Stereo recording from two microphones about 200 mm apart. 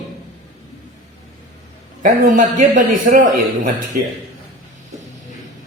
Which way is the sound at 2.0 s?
45° right (ahead or behind).